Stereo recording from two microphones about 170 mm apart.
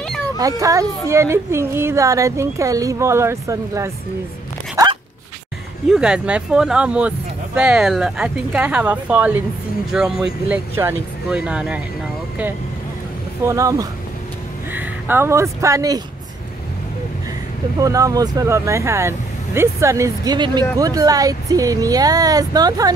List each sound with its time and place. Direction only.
0.4 s speech: 20° right (ahead or behind)
5.9 s speech: 5° right (ahead or behind)
13.5 s speech: 20° right (ahead or behind)
17.7 s speech: 20° right (ahead or behind)